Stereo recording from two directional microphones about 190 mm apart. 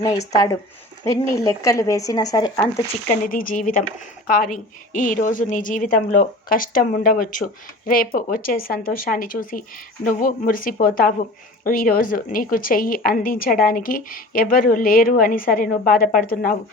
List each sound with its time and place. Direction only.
1.0 s speech: 15° left (ahead or behind)
3.1 s a woman's voice: 45° left (ahead or behind)